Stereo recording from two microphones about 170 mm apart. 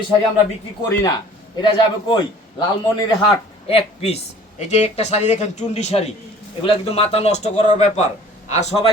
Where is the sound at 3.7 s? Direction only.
35° left (ahead or behind).